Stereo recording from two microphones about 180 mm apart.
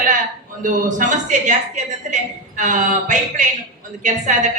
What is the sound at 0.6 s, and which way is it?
A man's voice, 45° right (ahead or behind).